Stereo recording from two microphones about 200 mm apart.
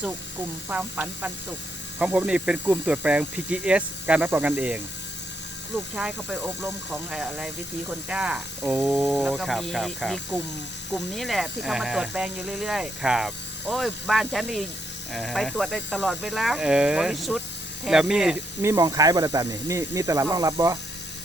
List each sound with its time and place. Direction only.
0.7 s speech: 10° right (ahead or behind)
5.9 s speech: 5° right (ahead or behind)
18.6 s speech: 15° right (ahead or behind)